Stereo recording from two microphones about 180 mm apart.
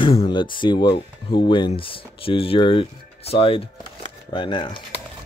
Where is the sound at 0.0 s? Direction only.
30° left (ahead or behind).